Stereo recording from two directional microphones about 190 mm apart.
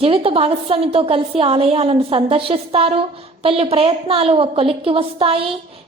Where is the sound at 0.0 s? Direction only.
30° right (ahead or behind).